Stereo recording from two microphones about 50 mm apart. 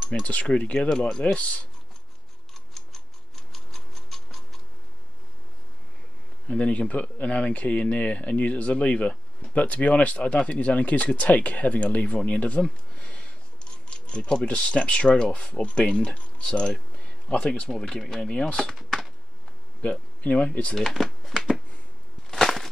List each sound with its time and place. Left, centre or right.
0.1 s speech: left
1.2 s speech: left
3.5 s mechanisms: centre
6.5 s speech: left
17.6 s speech: centre
18.8 s a sound: centre
19.8 s speech: left
20.7 s speech: centre
22.3 s a sound: centre